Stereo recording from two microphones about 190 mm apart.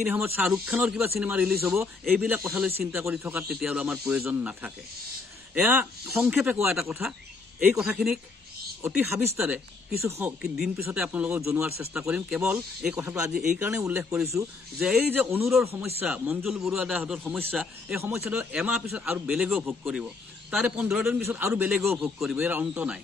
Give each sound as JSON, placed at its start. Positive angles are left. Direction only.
{"t": 0.0, "sound": "a man's voice", "side_deg": -5}
{"t": 8.8, "sound": "a man's voice", "side_deg": -15}